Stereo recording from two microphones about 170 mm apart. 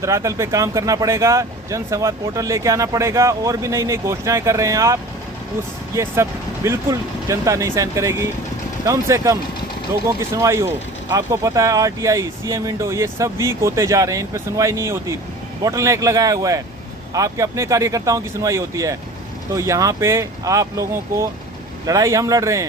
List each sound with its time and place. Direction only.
0.0 s speech: 15° right (ahead or behind)